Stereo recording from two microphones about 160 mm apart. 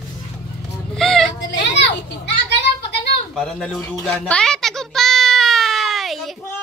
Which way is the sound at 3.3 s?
Centre (ahead or behind).